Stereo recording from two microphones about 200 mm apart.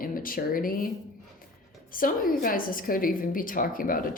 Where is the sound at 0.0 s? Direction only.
45° left (ahead or behind).